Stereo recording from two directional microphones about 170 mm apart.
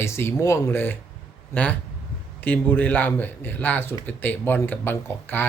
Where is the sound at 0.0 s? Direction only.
15° left (ahead or behind).